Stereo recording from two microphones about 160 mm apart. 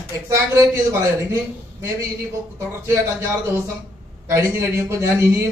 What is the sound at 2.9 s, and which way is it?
A man's voice, 15° right (ahead or behind).